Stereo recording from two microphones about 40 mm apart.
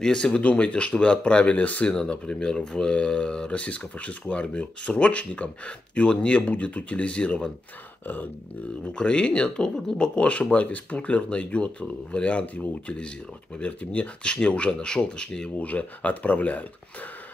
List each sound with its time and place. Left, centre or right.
0.0 s speech: centre
0.4 s speech: left
1.9 s speech: left
8.9 s speech: left
15.6 s speech: left